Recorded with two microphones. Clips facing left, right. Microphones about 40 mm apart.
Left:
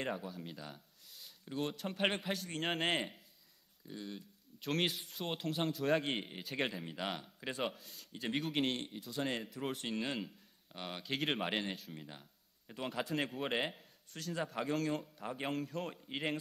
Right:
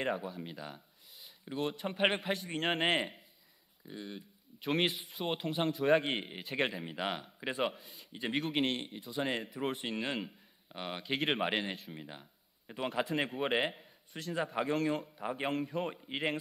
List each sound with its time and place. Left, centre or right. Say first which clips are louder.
0.0 s speech: right 5 dB; centre